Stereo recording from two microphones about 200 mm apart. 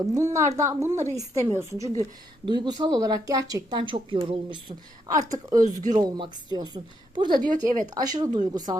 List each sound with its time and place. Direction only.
0.0 s a woman's voice: 15° right (ahead or behind)